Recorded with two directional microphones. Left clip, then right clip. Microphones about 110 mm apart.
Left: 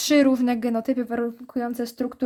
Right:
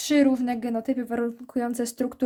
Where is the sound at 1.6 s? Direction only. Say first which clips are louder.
Even; 5° right (ahead or behind).